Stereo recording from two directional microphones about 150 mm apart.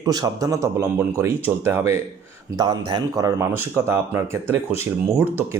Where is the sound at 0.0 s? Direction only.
25° right (ahead or behind).